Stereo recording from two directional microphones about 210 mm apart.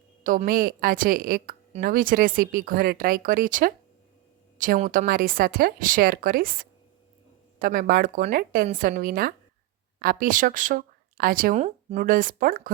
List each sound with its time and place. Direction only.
0.2 s a woman's voice: 40° right (ahead or behind)